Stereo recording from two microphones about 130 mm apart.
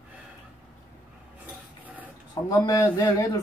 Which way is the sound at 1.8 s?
10° right (ahead or behind).